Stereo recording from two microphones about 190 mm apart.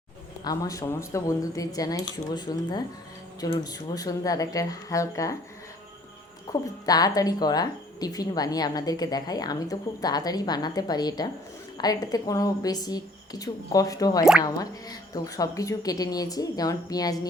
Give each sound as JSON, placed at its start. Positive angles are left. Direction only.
{"t": 0.4, "sound": "a woman's voice", "side_deg": 20}
{"t": 6.5, "sound": "a woman's voice", "side_deg": 20}